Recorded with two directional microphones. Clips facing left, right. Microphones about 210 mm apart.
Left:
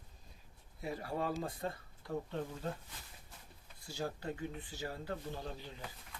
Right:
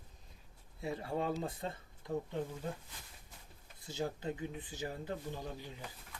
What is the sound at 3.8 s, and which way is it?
Speech, 20° right (ahead or behind).